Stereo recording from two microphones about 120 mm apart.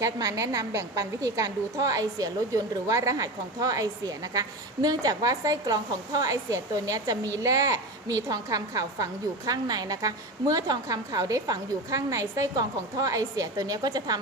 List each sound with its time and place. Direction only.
0.0 s a woman's voice: 30° right (ahead or behind)